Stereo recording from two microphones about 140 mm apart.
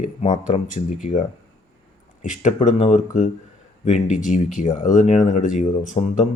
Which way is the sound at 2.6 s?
60° left (ahead or behind).